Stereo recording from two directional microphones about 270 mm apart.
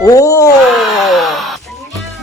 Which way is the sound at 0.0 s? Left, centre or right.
Centre.